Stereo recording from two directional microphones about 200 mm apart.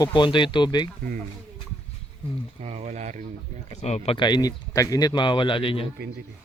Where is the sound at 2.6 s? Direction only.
30° right (ahead or behind).